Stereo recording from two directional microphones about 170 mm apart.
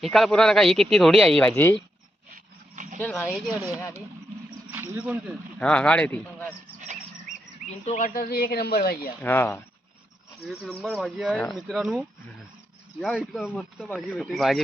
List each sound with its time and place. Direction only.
0.0 s speech: centre (ahead or behind)
2.3 s a sound: 50° right (ahead or behind)
3.0 s speech: 10° left (ahead or behind)
4.7 s speech: 10° right (ahead or behind)
5.5 s speech: 5° left (ahead or behind)
7.9 s speech: 50° left (ahead or behind); by 9.0 s 65° left (ahead or behind)
9.2 s speech: 10° left (ahead or behind)
10.4 s speech: centre (ahead or behind)